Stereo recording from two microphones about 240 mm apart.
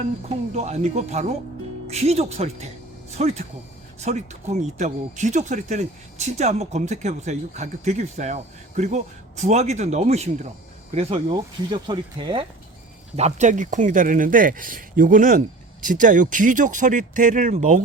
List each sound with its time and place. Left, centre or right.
0.3 s speech: right